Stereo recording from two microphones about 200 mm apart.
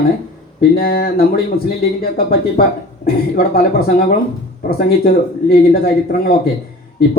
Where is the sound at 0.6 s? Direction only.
50° left (ahead or behind).